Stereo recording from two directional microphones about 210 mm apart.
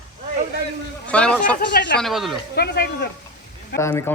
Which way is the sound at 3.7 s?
15° left (ahead or behind).